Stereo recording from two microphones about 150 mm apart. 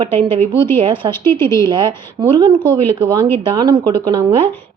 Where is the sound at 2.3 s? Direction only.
30° right (ahead or behind).